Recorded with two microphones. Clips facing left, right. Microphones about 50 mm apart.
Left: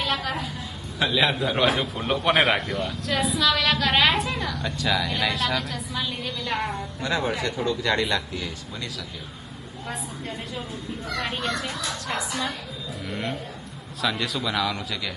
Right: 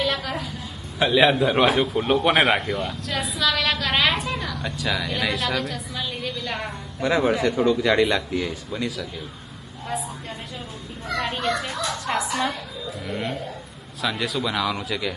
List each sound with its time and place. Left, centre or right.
0.0 s a sound: centre
0.9 s speech: centre
1.9 s a woman's voice: centre
7.0 s speech: centre
8.4 s speech: centre
9.9 s a woman's voice: centre
12.1 s speech: right
13.1 s a woman's voice: centre